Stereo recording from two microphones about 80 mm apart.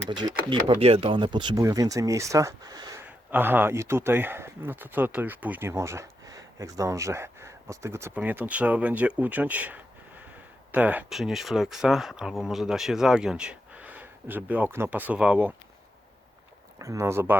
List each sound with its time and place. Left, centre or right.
0.1 s speech: right
0.7 s speech: right
1.1 s speech: right
1.5 s speech: right
3.1 s speech: right
5.6 s speech: right
6.2 s speech: right
8.1 s speech: right
11.1 s speech: centre
16.7 s speech: right